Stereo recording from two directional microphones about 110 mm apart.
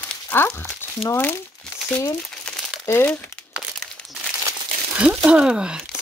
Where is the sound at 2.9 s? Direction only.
25° left (ahead or behind).